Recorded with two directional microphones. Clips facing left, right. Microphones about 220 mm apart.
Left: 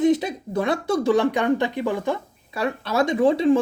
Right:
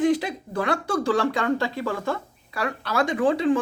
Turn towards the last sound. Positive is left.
turn(degrees=25)  # may be behind; listen again after turning